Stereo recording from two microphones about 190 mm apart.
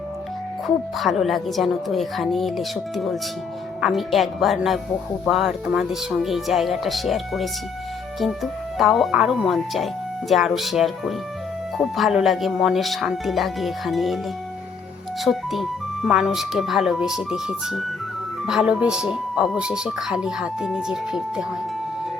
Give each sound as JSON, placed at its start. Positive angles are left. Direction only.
{"t": 0.9, "sound": "speech", "side_deg": 0}
{"t": 15.2, "sound": "speech", "side_deg": 0}